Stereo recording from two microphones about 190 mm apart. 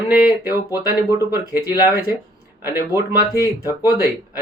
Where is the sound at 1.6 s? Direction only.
20° left (ahead or behind).